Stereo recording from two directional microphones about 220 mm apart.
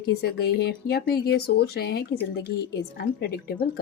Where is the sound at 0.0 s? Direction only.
45° left (ahead or behind).